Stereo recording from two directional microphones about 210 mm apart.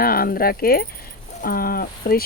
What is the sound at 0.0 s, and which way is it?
Speech, 45° left (ahead or behind).